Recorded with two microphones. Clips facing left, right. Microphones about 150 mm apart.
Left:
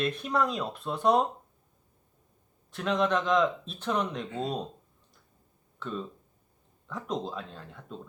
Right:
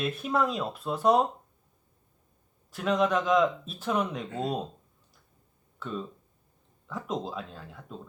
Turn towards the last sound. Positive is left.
turn(degrees=-5)  # may be behind; listen again after turning